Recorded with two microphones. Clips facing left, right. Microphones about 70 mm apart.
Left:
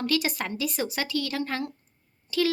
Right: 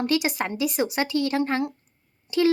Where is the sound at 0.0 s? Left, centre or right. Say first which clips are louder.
Right 3 dB; right.